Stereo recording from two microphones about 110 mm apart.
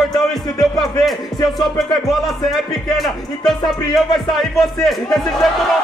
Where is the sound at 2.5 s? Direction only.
Centre (ahead or behind).